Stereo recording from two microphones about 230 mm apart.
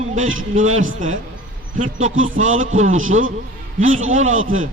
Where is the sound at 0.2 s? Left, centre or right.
Right.